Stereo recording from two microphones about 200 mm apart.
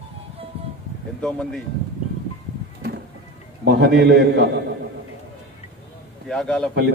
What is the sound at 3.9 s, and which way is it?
Speech, 55° right (ahead or behind).